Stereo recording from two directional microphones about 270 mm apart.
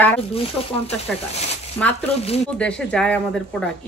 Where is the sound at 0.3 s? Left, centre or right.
Left.